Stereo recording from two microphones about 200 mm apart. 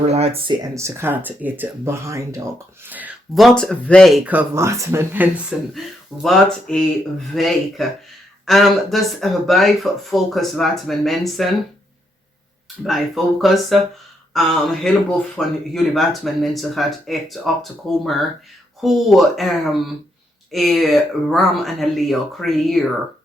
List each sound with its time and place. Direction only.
0.1 s speech: 30° right (ahead or behind)
0.8 s speech: 15° right (ahead or behind)
12.8 s speech: centre (ahead or behind)